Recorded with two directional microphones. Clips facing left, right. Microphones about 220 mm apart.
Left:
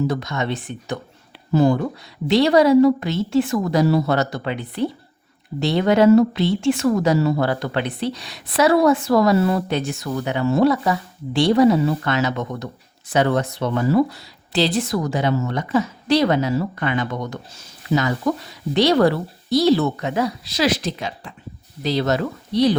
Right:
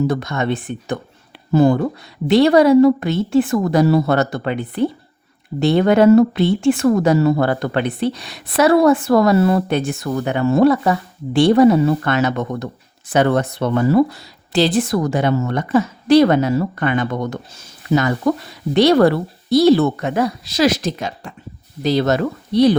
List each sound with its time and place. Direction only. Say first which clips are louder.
0.1 s a woman's voice: right 4 dB; 55° right (ahead or behind)